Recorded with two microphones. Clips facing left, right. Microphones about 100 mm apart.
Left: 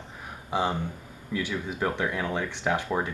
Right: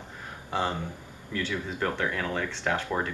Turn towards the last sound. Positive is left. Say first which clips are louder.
# left 2 dB
turn(degrees=15)  # may be behind; listen again after turning